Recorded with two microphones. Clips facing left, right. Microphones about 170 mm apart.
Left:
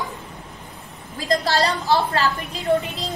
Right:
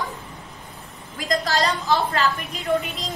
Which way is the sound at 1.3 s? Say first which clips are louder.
Left 2 dB; 35° left (ahead or behind).